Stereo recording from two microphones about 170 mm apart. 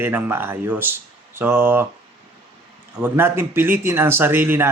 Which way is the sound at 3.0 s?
15° right (ahead or behind).